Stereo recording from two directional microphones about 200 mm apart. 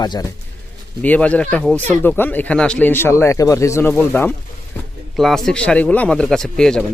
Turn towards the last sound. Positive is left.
turn(degrees=5)  # may be behind; listen again after turning